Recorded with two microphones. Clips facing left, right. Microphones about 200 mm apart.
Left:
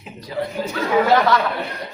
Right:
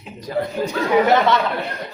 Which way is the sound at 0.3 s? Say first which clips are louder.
Right 3 dB; 50° right (ahead or behind).